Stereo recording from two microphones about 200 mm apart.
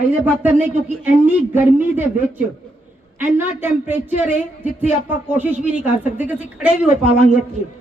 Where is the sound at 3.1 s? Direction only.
10° right (ahead or behind).